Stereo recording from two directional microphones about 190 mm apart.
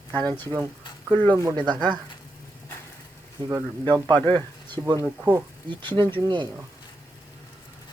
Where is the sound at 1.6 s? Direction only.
20° right (ahead or behind).